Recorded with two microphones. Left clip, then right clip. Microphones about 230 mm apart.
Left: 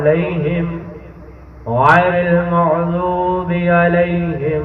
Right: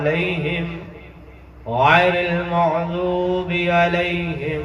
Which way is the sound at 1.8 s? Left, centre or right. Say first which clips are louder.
Left 3 dB; right.